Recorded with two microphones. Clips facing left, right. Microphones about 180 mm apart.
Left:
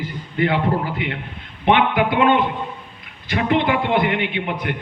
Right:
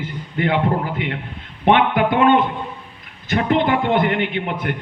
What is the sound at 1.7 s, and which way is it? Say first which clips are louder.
A man's voice: right 1 dB; 45° right (ahead or behind).